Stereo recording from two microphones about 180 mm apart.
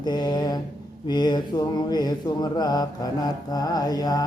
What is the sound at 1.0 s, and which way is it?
Mantra, 25° left (ahead or behind).